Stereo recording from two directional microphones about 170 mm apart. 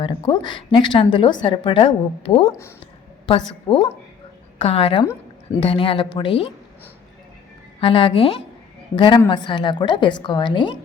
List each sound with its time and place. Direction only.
0.0 s a woman's voice: 30° left (ahead or behind)
4.6 s a woman's voice: 35° left (ahead or behind)
7.8 s a woman's voice: 30° left (ahead or behind)